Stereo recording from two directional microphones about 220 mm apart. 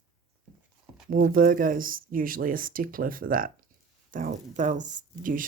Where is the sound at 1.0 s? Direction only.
40° right (ahead or behind).